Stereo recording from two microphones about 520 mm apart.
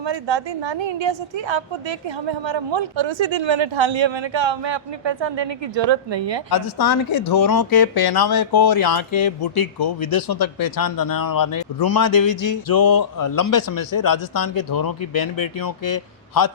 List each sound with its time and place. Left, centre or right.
0.0 s a woman's voice: right
6.5 s speech: left